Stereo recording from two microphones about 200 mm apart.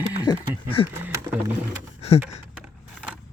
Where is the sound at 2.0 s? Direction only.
30° left (ahead or behind).